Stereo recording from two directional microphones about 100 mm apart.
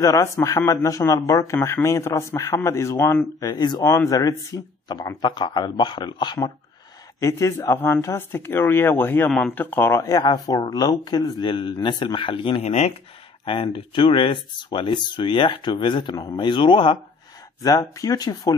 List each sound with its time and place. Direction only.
0.0 s speech: 35° left (ahead or behind)
3.0 s speech: 20° left (ahead or behind)
3.3 s speech: 45° left (ahead or behind)
4.1 s speech: 35° left (ahead or behind)
7.2 s speech: 30° left (ahead or behind)
9.9 s speech: 35° left (ahead or behind); by 12.9 s 90° left
13.5 s speech: 60° left (ahead or behind)
17.6 s speech: 35° left (ahead or behind)